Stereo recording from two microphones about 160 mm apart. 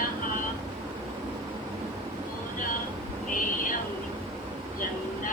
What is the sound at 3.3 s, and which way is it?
Owl, 55° left (ahead or behind).